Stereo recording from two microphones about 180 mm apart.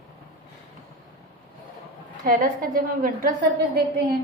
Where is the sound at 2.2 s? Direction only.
50° right (ahead or behind).